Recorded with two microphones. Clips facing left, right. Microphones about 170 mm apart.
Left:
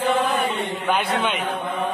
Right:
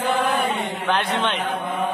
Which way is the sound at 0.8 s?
5° left (ahead or behind).